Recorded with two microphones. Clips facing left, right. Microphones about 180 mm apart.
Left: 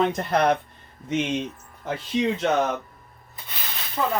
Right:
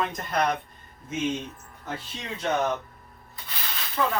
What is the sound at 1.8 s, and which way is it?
Speech, 90° left.